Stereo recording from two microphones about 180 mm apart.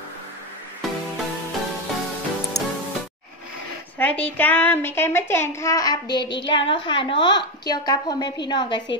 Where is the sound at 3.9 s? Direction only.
10° left (ahead or behind).